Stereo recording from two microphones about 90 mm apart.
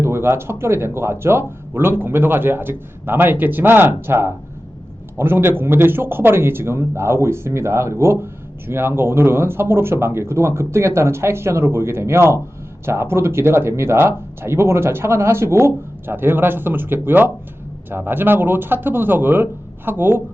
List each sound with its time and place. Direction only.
0.0 s speech: 30° right (ahead or behind)